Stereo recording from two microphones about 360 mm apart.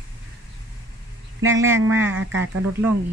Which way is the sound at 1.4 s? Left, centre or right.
Right.